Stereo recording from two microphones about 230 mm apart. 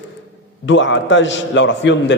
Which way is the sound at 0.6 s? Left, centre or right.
Left.